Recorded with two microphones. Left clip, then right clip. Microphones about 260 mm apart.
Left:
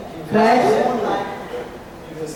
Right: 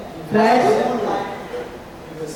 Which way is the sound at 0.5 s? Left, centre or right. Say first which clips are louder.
Even; centre.